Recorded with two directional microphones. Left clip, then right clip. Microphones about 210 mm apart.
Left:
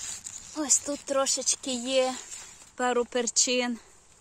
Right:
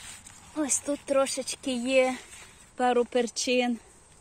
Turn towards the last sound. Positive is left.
turn(degrees=15)  # may be behind; listen again after turning